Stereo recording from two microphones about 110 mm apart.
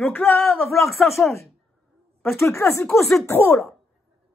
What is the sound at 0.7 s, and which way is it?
Speech, centre (ahead or behind).